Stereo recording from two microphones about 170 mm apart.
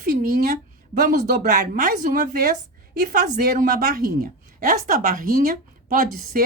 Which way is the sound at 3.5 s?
60° right (ahead or behind).